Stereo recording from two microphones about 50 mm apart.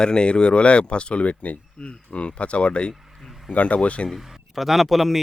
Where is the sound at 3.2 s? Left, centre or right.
Centre.